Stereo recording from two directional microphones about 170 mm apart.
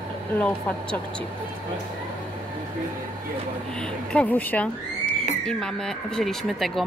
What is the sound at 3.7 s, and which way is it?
Speech, 5° left (ahead or behind).